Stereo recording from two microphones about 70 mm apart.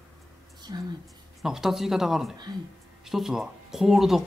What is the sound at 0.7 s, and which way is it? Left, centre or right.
Speech, right.